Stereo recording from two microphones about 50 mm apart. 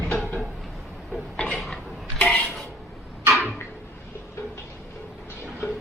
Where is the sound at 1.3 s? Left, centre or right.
Centre.